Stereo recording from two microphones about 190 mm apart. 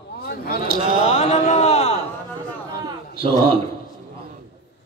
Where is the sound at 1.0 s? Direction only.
35° left (ahead or behind).